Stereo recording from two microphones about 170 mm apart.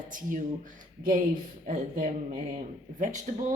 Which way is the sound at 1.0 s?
55° right (ahead or behind).